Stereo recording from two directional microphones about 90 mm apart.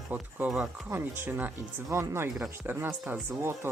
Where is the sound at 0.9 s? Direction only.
25° right (ahead or behind).